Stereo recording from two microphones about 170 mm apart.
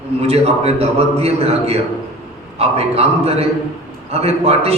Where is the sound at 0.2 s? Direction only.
35° right (ahead or behind).